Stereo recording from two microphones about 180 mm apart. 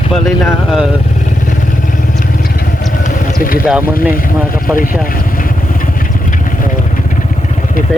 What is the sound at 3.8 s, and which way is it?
Speech, 50° left (ahead or behind).